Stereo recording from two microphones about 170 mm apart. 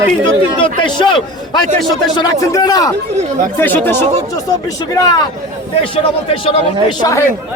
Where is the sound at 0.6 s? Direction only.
30° left (ahead or behind).